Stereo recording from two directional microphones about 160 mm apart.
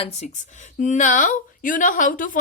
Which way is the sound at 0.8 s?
50° left (ahead or behind).